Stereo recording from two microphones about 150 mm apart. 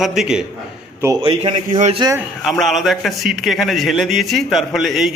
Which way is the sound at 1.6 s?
55° right (ahead or behind).